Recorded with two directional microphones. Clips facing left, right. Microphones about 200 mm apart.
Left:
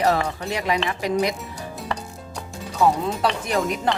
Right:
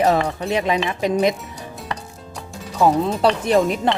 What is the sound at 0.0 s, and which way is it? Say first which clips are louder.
Speech: right 3 dB; 20° right (ahead or behind).